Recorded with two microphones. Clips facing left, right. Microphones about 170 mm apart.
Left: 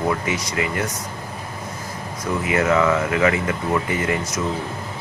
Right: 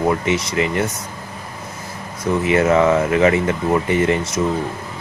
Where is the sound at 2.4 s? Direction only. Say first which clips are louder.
Right 4 dB; 30° right (ahead or behind).